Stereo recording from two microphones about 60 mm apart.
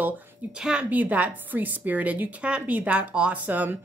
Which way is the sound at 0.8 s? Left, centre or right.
Right.